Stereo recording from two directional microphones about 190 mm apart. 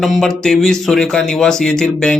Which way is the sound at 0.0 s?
Centre (ahead or behind).